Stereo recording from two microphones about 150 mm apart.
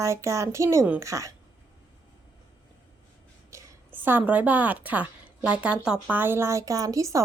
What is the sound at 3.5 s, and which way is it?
A woman's voice, 15° right (ahead or behind).